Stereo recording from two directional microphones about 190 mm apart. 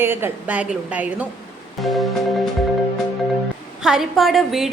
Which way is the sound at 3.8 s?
Centre (ahead or behind).